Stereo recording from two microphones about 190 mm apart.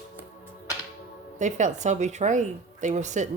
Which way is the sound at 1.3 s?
40° right (ahead or behind).